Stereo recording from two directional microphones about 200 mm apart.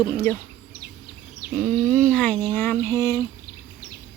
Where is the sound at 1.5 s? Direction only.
5° left (ahead or behind).